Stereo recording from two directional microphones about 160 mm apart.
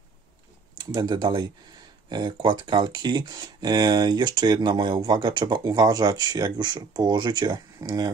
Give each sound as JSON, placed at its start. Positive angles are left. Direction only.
{"t": 0.7, "sound": "speech", "side_deg": -25}